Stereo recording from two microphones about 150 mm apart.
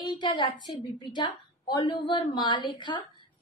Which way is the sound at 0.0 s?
30° left (ahead or behind).